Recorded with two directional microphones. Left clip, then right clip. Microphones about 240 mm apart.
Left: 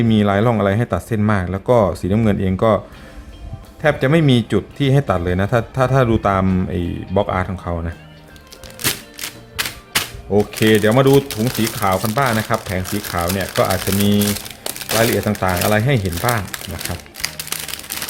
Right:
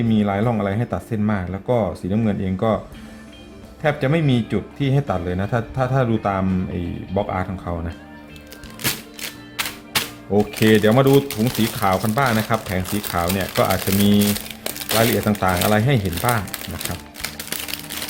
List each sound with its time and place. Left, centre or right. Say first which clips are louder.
0.0 s a man's voice: left 5 dB; centre
3.8 s a man's voice: left 5 dB; centre
9.9 s speech: left 3 dB; centre